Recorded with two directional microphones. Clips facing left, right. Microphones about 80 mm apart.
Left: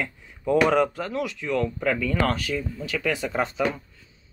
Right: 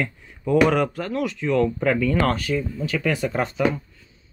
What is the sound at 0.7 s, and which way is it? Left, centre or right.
Speech, centre.